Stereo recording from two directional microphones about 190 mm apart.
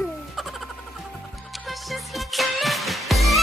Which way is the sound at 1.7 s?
Centre (ahead or behind).